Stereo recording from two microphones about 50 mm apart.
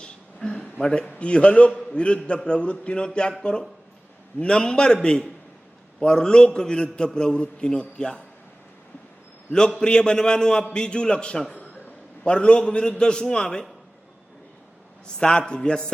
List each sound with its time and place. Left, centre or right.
0.0 s a sound: centre
1.1 s a man's voice: left
4.4 s a man's voice: centre
9.5 s a man's voice: centre
15.0 s a man's voice: centre